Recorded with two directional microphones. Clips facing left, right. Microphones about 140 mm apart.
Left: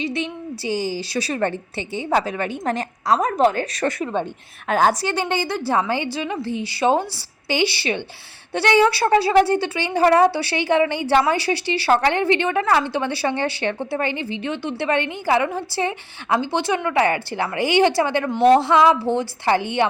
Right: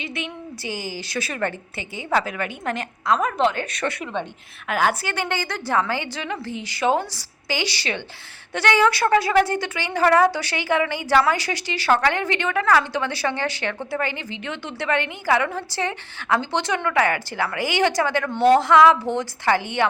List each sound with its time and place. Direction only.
0.8 s a woman's voice: 30° left (ahead or behind)
5.0 s a woman's voice: 15° left (ahead or behind)
5.4 s a woman's voice: 25° left (ahead or behind)
7.5 s a woman's voice: 20° left (ahead or behind)